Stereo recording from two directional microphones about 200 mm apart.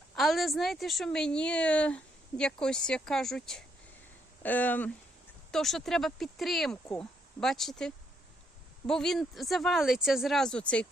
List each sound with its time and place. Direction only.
0.2 s speech: centre (ahead or behind)